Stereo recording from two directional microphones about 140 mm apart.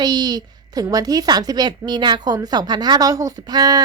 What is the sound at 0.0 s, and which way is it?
A woman's voice, 30° right (ahead or behind).